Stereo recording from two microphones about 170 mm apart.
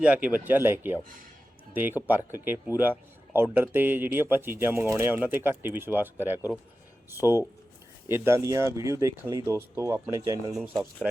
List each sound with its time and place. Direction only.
0.0 s speech: 5° right (ahead or behind)
10.5 s speech: centre (ahead or behind)